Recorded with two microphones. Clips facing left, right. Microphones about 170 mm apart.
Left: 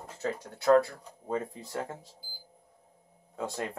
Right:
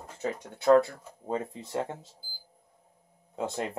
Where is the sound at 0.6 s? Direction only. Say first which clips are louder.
Right 2 dB; 25° right (ahead or behind).